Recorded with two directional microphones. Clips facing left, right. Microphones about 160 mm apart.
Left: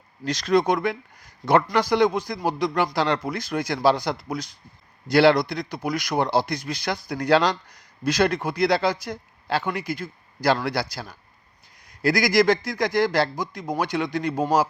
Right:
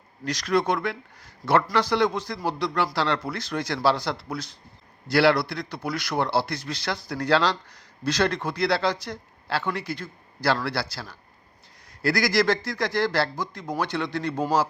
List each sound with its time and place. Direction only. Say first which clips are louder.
0.3 s speech: left 3 dB; 25° left (ahead or behind)
0.6 s a man's voice: left 3 dB; 15° left (ahead or behind)